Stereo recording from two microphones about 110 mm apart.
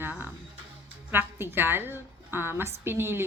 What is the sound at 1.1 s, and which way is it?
A woman's voice, 20° right (ahead or behind).